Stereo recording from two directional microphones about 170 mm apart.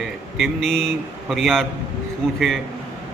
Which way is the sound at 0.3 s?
Centre (ahead or behind).